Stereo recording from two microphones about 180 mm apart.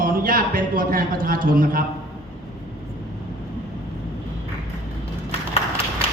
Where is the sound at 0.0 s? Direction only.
50° right (ahead or behind).